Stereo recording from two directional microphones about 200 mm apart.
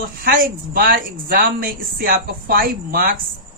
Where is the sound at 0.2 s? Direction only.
45° right (ahead or behind).